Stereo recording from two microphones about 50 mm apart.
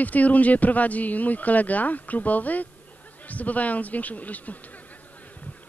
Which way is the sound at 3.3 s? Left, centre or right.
Left.